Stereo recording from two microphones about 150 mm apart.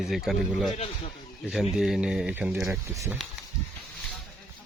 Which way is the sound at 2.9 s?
20° right (ahead or behind).